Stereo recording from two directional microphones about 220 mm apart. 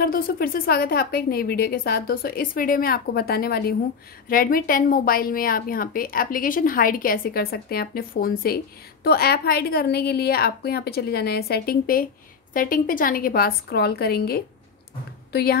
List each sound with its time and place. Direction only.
0.0 s a woman's voice: 40° left (ahead or behind)